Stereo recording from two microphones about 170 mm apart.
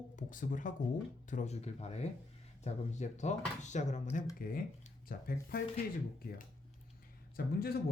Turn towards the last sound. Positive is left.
turn(degrees=65)  # may be behind; listen again after turning